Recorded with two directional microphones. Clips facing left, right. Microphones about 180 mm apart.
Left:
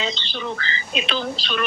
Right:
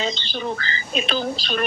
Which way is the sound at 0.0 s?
45° right (ahead or behind).